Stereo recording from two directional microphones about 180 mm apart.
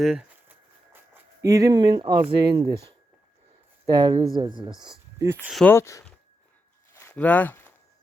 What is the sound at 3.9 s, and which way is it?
Speech, 25° right (ahead or behind).